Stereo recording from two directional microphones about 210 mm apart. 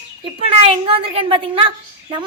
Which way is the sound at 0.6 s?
25° right (ahead or behind).